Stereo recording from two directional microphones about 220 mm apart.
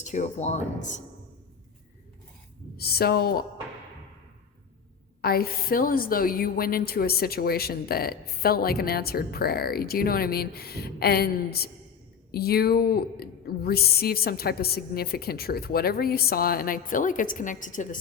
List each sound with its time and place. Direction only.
0.0 s speech: 30° left (ahead or behind)
2.7 s a woman's voice: 45° left (ahead or behind)
5.2 s a woman's voice: 45° left (ahead or behind)